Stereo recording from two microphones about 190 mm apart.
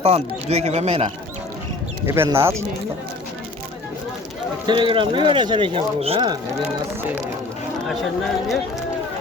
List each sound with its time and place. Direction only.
0.0 s speech: 30° right (ahead or behind)
2.0 s speech: 15° right (ahead or behind)
4.6 s speech: 25° right (ahead or behind)
7.9 s speech: centre (ahead or behind)